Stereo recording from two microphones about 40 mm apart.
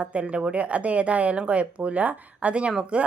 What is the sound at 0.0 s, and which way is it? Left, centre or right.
A woman's voice, right.